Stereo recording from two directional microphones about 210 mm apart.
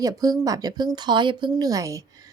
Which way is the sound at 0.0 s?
15° right (ahead or behind).